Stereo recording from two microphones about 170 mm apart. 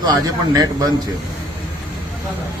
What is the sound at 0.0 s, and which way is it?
Speech, 20° right (ahead or behind).